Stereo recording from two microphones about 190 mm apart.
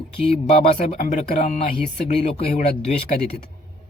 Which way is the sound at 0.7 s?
35° left (ahead or behind).